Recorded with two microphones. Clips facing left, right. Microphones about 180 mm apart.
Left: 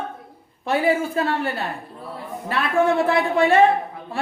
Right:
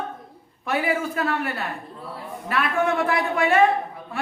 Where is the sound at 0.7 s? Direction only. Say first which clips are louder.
Left 4 dB; 30° left (ahead or behind).